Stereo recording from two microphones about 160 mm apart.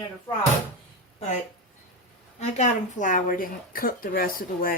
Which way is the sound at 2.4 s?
45° left (ahead or behind).